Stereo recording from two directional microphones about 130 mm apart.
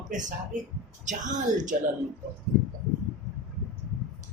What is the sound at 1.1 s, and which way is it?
Speech, 70° right (ahead or behind).